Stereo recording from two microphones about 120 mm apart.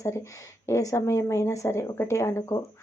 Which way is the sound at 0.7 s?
25° left (ahead or behind).